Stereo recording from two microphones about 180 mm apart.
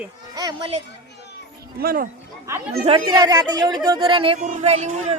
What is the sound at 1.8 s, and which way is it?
Speech, 55° right (ahead or behind).